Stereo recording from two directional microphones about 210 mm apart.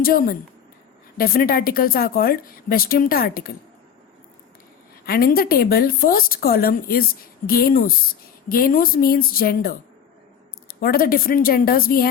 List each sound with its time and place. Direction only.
0.0 s a woman's voice: 45° left (ahead or behind)
5.0 s a woman's voice: 45° left (ahead or behind)